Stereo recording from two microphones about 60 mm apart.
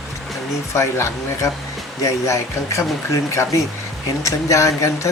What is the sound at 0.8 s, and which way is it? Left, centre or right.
Speech, left.